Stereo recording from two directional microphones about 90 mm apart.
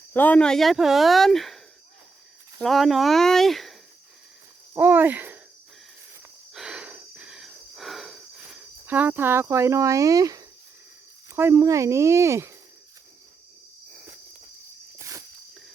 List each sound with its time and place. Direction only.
0.1 s speech: 20° left (ahead or behind); by 3.8 s centre (ahead or behind)
4.7 s speech: 20° right (ahead or behind)
6.5 s wheeze: 5° right (ahead or behind)
8.4 s speech: 15° right (ahead or behind); by 10.4 s 40° right (ahead or behind)
11.3 s speech: 30° right (ahead or behind)
14.9 s a sound: 35° right (ahead or behind)